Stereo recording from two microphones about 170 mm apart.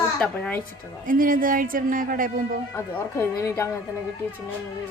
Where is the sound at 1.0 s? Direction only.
55° right (ahead or behind).